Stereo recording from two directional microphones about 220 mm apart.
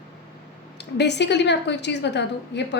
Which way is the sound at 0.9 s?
50° left (ahead or behind).